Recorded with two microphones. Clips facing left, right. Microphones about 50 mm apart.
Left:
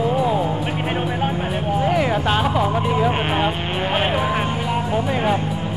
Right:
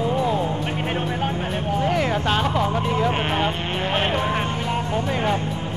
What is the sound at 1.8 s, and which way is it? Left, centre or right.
Music, centre.